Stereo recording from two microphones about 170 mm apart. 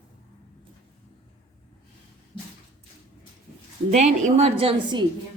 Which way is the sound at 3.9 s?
40° right (ahead or behind).